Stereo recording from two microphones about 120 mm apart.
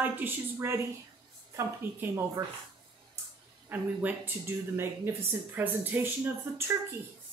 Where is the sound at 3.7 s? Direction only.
15° right (ahead or behind).